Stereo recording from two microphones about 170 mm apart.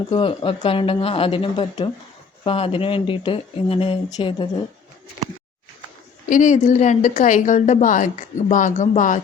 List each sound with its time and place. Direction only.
0.1 s speech: 30° left (ahead or behind)
6.2 s a woman's voice: 50° left (ahead or behind)